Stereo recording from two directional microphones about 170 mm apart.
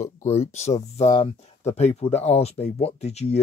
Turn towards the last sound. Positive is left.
turn(degrees=40)  # may be behind; listen again after turning